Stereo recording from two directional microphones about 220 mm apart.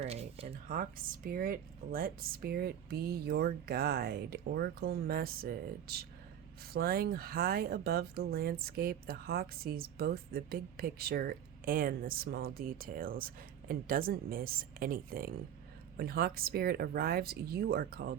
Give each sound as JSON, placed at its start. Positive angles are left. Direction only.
{"t": 0.0, "sound": "speech", "side_deg": -30}